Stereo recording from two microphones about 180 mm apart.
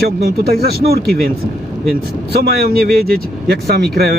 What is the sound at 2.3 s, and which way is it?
Speech, 60° right (ahead or behind).